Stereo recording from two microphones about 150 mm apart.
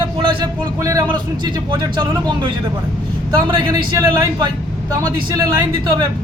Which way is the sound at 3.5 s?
30° right (ahead or behind).